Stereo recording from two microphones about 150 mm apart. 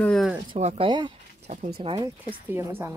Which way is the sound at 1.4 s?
55° right (ahead or behind).